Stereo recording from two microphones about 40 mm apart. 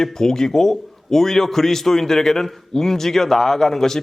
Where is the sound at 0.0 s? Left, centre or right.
Centre.